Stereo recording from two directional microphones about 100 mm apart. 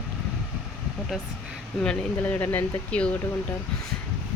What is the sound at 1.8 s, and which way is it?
Speech, 15° left (ahead or behind).